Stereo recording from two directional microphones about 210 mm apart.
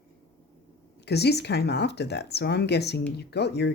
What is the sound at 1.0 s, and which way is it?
Speech, 50° left (ahead or behind).